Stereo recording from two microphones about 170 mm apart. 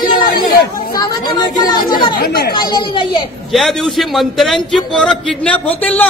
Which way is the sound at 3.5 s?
Centre (ahead or behind).